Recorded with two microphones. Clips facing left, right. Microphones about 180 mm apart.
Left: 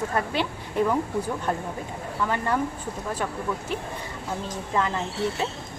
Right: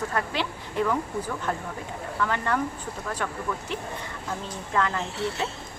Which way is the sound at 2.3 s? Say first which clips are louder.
Left 2 dB; 15° left (ahead or behind).